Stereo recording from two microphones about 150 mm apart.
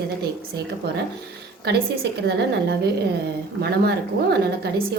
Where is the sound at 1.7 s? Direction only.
90° right.